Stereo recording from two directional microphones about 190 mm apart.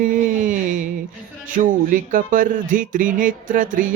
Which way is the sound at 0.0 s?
45° right (ahead or behind).